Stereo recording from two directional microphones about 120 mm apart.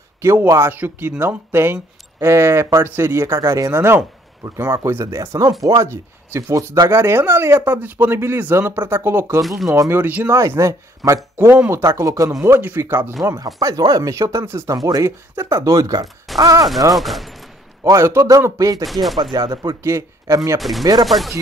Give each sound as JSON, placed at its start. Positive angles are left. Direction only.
{"t": 0.2, "sound": "speech", "side_deg": -20}
{"t": 9.4, "sound": "speech", "side_deg": 0}
{"t": 9.7, "sound": "speech", "side_deg": -25}
{"t": 13.6, "sound": "speech", "side_deg": -30}
{"t": 16.9, "sound": "speech", "side_deg": 0}
{"t": 17.8, "sound": "speech", "side_deg": -25}
{"t": 18.9, "sound": "speech", "side_deg": 0}
{"t": 19.3, "sound": "speech", "side_deg": -30}
{"t": 21.0, "sound": "speech", "side_deg": 0}